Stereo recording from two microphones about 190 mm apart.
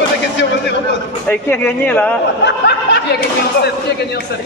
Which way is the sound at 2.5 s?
65° left (ahead or behind).